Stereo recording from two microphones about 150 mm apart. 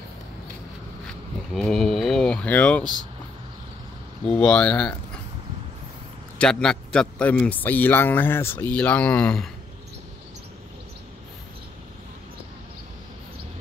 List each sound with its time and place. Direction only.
1.5 s a sound: 5° left (ahead or behind)
2.8 s speech: 30° right (ahead or behind)
4.4 s a man's voice: 5° left (ahead or behind)
6.3 s a man's voice: 5° left (ahead or behind)